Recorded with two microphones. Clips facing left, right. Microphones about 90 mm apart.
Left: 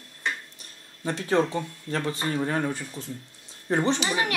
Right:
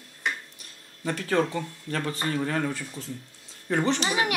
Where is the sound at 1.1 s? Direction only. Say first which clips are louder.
Left 1 dB; 25° left (ahead or behind).